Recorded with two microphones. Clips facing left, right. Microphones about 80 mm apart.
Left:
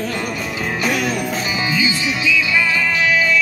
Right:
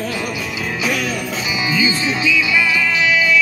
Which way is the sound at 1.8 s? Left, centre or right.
Right.